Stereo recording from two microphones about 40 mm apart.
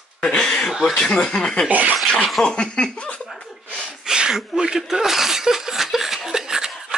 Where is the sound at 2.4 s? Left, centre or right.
Left.